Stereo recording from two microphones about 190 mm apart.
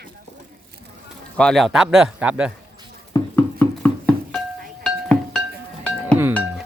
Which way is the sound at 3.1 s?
10° left (ahead or behind).